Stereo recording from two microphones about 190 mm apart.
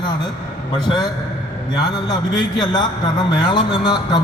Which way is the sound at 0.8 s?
20° left (ahead or behind).